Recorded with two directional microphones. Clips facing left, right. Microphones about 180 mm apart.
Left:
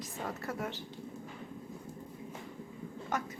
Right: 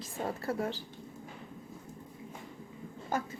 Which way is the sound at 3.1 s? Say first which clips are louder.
Right 2 dB; 30° right (ahead or behind).